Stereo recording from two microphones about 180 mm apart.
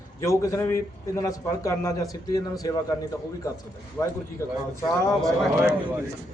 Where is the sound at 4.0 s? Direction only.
15° left (ahead or behind).